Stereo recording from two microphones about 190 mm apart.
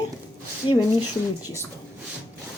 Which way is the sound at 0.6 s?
25° left (ahead or behind).